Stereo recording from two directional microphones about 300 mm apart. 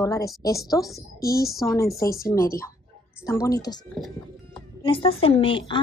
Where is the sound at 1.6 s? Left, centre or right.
Centre.